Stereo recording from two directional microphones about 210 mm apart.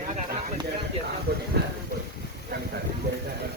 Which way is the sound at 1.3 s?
50° right (ahead or behind).